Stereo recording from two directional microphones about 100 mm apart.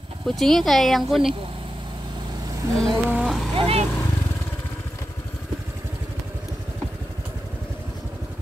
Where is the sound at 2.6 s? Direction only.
30° right (ahead or behind).